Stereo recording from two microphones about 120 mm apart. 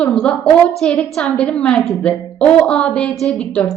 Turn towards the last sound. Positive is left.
turn(degrees=10)  # may be behind; listen again after turning